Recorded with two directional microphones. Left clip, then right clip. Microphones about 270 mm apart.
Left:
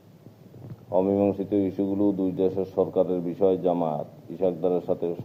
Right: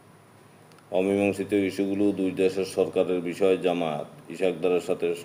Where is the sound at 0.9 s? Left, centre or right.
Centre.